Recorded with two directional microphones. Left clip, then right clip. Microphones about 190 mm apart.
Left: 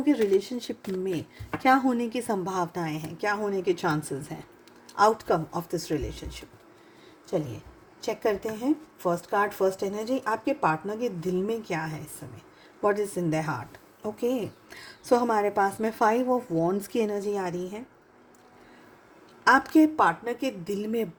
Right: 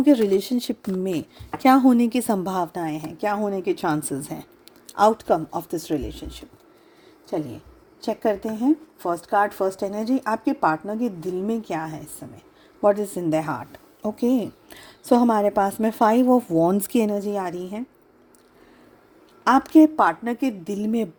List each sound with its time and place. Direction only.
0.0 s speech: 45° right (ahead or behind)
9.0 s speech: 45° right (ahead or behind)
19.5 s speech: 40° right (ahead or behind)